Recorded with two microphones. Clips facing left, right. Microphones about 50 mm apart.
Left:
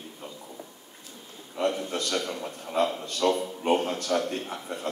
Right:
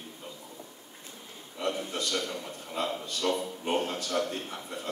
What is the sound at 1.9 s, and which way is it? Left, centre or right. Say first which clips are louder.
Speech: left 3 dB; left.